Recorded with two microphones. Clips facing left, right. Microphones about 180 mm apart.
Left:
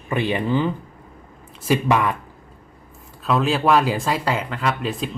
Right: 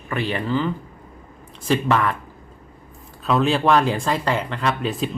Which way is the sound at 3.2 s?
Centre (ahead or behind).